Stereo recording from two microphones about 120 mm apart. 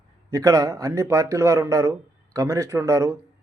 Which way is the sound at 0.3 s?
25° right (ahead or behind).